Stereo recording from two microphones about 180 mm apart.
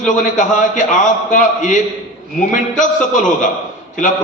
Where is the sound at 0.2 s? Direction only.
45° left (ahead or behind).